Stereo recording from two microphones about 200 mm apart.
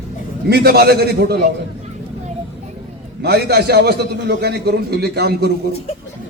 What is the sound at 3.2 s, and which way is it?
A man's voice, 55° right (ahead or behind).